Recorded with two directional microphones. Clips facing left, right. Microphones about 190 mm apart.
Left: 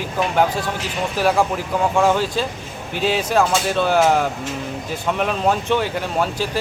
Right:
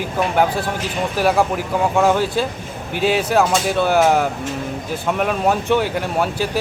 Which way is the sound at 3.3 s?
5° right (ahead or behind).